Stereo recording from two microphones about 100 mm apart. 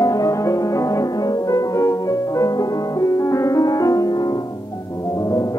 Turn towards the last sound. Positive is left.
turn(degrees=35)  # may be behind; listen again after turning